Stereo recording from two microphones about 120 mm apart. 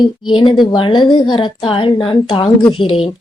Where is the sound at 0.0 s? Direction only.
40° left (ahead or behind).